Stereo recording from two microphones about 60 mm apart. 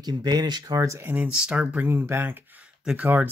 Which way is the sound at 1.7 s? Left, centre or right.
Right.